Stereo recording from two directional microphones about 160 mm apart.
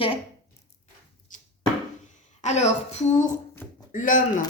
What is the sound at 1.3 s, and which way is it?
Chopping, 55° left (ahead or behind).